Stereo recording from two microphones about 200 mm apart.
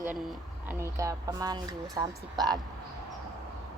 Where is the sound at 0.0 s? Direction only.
5° right (ahead or behind); by 2.6 s 20° right (ahead or behind).